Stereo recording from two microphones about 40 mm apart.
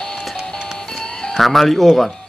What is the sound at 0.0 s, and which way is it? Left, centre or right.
Music, centre.